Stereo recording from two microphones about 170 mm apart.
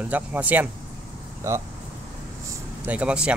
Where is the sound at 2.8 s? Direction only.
10° right (ahead or behind).